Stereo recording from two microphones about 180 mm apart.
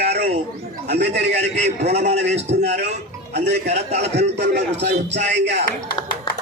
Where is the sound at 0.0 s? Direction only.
65° right (ahead or behind).